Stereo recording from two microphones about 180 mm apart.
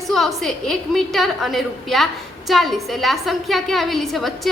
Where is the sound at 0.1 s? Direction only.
Centre (ahead or behind).